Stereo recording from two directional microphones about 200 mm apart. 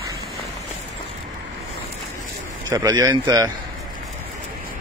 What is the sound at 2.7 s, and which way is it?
Speech, 20° right (ahead or behind).